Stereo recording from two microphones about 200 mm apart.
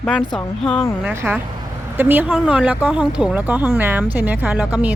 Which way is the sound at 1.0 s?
10° right (ahead or behind).